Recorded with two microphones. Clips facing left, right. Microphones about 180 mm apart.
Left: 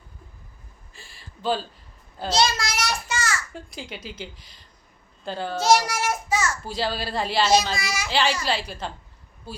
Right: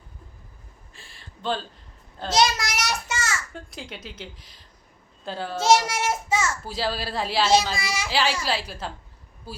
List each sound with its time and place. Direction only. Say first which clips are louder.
0.9 s a sound: left 2 dB; centre (ahead or behind)
2.3 s child singing: right 1 dB; 20° right (ahead or behind)
3.5 s speech: left 1 dB; centre (ahead or behind)
5.5 s child singing: even; 25° right (ahead or behind)
6.7 s speech: left 1 dB; centre (ahead or behind)
7.8 s a child's voice: even; 30° right (ahead or behind)
8.1 s speech: left 2 dB; 5° right (ahead or behind)